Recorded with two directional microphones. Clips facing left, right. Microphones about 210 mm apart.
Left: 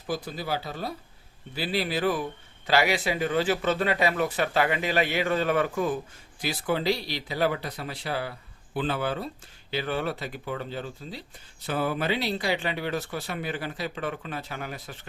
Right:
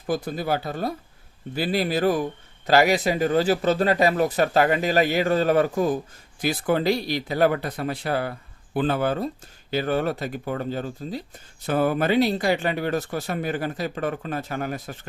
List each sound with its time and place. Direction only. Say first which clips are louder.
0.1 s speech: right 6 dB; 50° right (ahead or behind)
6.4 s speech: right 5 dB; 50° right (ahead or behind)